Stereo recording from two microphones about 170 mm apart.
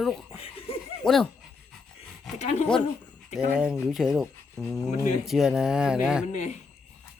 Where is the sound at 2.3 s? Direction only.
40° left (ahead or behind).